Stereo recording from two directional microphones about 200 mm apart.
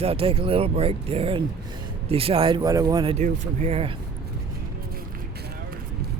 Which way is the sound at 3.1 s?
35° right (ahead or behind).